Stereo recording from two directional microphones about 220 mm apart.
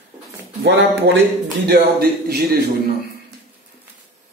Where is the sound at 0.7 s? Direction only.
55° right (ahead or behind).